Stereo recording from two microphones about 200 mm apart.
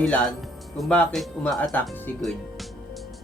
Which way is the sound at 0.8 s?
5° left (ahead or behind).